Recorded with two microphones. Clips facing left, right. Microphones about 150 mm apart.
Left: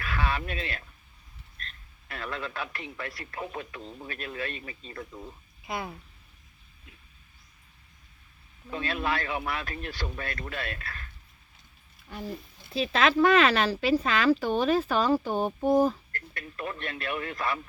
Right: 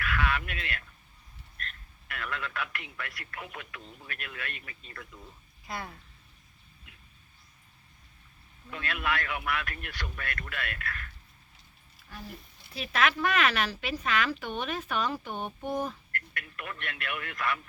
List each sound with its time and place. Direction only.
0.0 s a sound: 30° left (ahead or behind)
1.6 s a woman's voice: 30° left (ahead or behind)
5.6 s speech: 15° left (ahead or behind)
8.7 s speech: 30° left (ahead or behind)
12.7 s a woman's voice: 25° left (ahead or behind)